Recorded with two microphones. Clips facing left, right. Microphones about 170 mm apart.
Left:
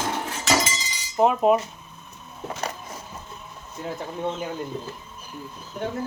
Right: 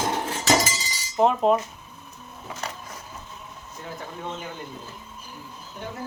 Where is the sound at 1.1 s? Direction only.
5° left (ahead or behind).